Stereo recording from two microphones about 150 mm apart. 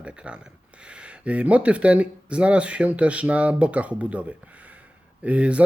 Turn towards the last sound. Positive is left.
turn(degrees=-10)  # may be behind; listen again after turning